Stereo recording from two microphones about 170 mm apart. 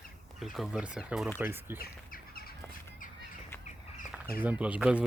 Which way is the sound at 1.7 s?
60° left (ahead or behind).